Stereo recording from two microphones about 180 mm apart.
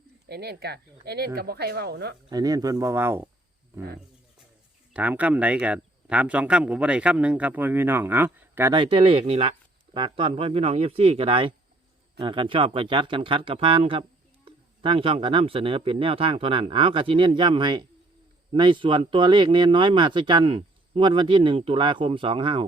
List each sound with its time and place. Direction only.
0.3 s speech: 65° right (ahead or behind)
2.3 s speech: 20° right (ahead or behind)
4.9 s speech: 5° right (ahead or behind)
8.7 s speech: 30° right (ahead or behind)